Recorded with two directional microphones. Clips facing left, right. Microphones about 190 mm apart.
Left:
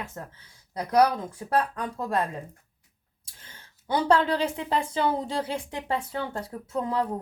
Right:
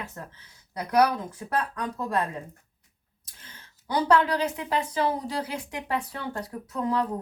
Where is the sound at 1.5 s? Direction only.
30° left (ahead or behind).